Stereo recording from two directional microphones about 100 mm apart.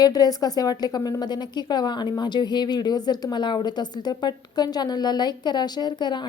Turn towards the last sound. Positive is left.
turn(degrees=50)  # may be behind; listen again after turning